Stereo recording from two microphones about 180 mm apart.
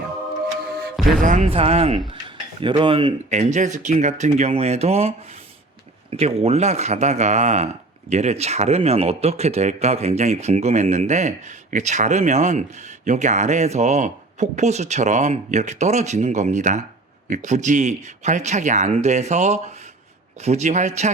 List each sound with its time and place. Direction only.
0.9 s music: centre (ahead or behind)
1.5 s a man's voice: 35° right (ahead or behind)
3.2 s a man's voice: 40° right (ahead or behind)